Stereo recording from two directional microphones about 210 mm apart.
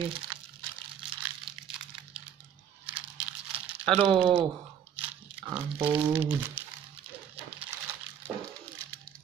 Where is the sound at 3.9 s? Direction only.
25° right (ahead or behind).